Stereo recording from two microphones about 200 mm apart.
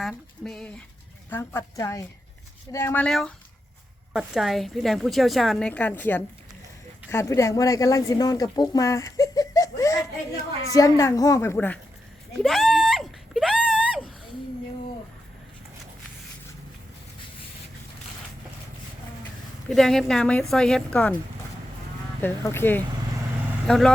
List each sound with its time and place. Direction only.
0.0 s a woman's voice: centre (ahead or behind)
12.4 s a sound: centre (ahead or behind)
19.7 s a woman's voice: centre (ahead or behind)
22.2 s a woman's voice: 10° left (ahead or behind)